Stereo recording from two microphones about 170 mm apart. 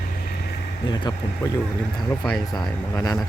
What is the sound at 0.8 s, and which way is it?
Speech, 25° left (ahead or behind).